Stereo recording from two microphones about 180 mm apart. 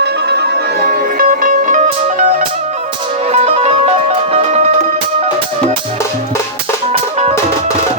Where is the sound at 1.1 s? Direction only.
50° right (ahead or behind).